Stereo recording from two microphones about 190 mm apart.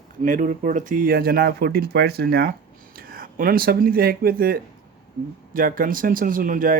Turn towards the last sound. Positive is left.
turn(degrees=-45)  # may be behind; listen again after turning